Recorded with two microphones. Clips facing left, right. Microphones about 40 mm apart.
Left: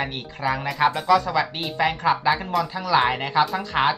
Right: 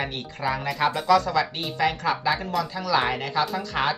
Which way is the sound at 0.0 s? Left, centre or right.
Centre.